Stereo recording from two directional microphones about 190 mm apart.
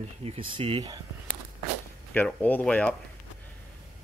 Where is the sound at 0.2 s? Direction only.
30° right (ahead or behind).